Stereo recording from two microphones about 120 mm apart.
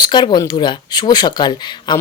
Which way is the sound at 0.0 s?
40° left (ahead or behind).